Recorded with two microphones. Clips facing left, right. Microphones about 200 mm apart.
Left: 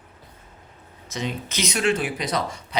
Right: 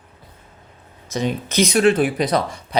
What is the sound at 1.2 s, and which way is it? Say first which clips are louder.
Speech: right 8 dB; 55° right (ahead or behind).